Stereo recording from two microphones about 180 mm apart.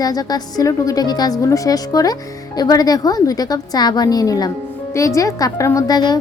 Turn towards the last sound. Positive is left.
turn(degrees=20)  # may be behind; listen again after turning